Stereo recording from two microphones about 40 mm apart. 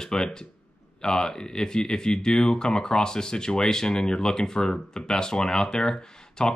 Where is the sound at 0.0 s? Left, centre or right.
Centre.